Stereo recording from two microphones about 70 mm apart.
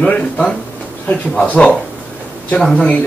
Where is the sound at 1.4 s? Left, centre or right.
Centre.